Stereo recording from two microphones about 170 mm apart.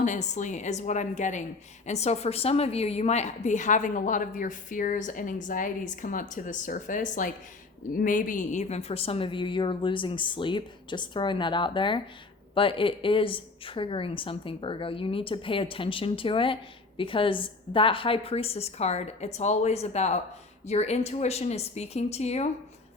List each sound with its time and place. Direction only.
0.0 s a woman's voice: 45° left (ahead or behind)